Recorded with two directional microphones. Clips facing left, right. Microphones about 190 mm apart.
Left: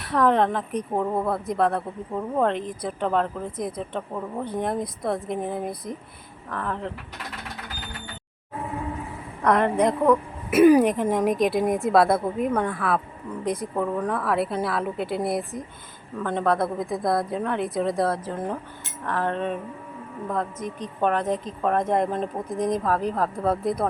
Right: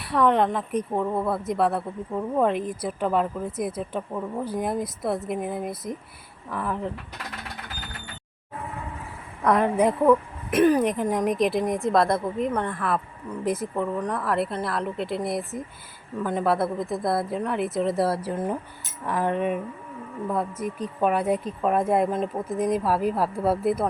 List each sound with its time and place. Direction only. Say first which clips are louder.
0.0 s speech: even; centre (ahead or behind)
9.4 s speech: even; centre (ahead or behind)
10.5 s speech: left 4 dB; 10° left (ahead or behind)